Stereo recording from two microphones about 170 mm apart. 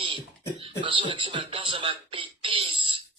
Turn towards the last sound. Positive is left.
turn(degrees=-30)  # may be behind; listen again after turning